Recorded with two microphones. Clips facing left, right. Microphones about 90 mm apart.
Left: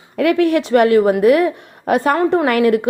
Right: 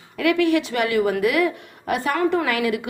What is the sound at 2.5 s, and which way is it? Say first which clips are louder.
Speech: left 9 dB; 50° left (ahead or behind).